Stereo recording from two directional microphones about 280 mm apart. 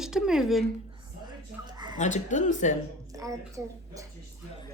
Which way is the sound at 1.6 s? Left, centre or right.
Centre.